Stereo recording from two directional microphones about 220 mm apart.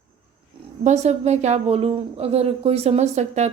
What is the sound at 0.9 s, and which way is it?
A woman's voice, 30° right (ahead or behind).